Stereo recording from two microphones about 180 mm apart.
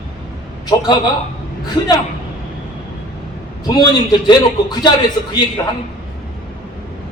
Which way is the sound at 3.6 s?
20° left (ahead or behind).